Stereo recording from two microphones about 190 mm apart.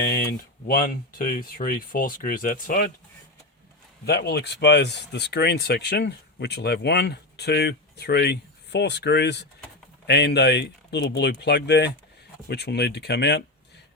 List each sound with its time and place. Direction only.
0.0 s speech: 55° left (ahead or behind)
4.0 s speech: 60° left (ahead or behind)